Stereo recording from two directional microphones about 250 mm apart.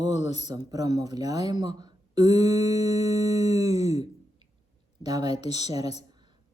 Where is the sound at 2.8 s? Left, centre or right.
Centre.